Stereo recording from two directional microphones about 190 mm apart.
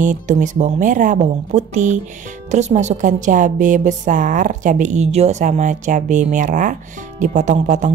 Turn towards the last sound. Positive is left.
turn(degrees=-40)  # may be behind; listen again after turning